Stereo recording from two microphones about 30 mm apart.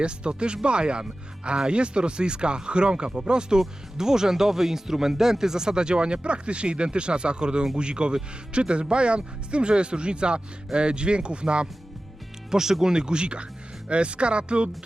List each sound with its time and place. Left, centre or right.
0.0 s speech: right
3.9 s speech: centre; by 11.7 s right
12.5 s speech: centre; by 14.7 s right